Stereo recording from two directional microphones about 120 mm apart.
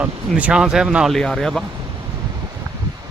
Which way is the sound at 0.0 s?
10° right (ahead or behind).